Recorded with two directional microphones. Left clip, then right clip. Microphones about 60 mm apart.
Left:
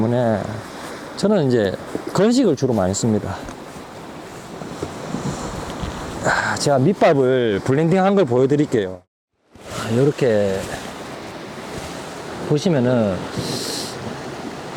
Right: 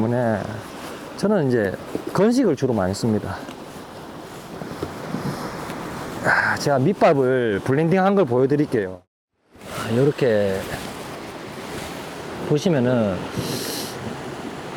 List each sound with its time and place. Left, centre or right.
0.0 s speech: left
4.8 s wind: centre
6.2 s a sound: centre
7.0 s speech: left
7.3 s speech: left
12.5 s speech: left